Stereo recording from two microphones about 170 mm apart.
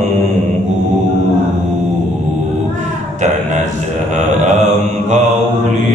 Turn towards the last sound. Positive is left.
turn(degrees=-45)  # may be behind; listen again after turning